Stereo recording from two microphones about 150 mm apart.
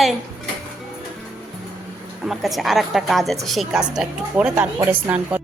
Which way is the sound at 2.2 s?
Centre (ahead or behind).